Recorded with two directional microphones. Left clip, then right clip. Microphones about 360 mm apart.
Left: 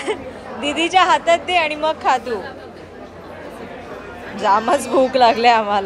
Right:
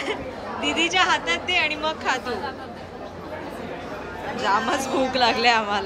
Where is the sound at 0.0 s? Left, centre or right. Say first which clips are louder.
Left 4 dB; centre.